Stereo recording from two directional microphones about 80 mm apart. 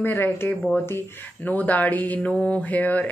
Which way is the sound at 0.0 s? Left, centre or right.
Left.